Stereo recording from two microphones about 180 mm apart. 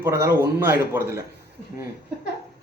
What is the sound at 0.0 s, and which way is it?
Speech, 15° right (ahead or behind).